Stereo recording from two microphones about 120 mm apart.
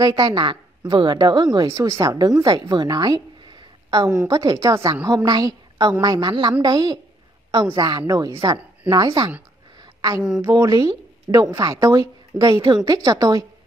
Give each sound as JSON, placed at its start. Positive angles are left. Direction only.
{"t": 0.0, "sound": "a woman's voice", "side_deg": -35}
{"t": 9.8, "sound": "a sound", "side_deg": -30}
{"t": 10.4, "sound": "a woman's voice", "side_deg": -30}